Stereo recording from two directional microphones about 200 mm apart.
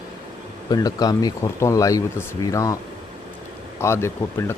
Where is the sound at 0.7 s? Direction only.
20° left (ahead or behind).